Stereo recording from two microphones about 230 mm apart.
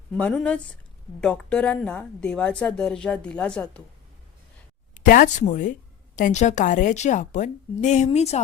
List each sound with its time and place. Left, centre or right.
0.1 s a woman's voice: centre
4.9 s a woman's voice: left